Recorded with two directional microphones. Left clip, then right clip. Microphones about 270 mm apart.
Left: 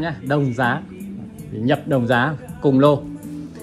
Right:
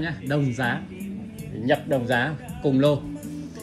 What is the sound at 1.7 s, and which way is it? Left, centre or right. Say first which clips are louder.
Speech: left 4 dB; left.